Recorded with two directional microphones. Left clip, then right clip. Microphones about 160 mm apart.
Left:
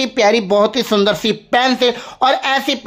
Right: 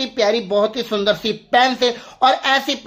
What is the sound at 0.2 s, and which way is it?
Speech, 40° left (ahead or behind).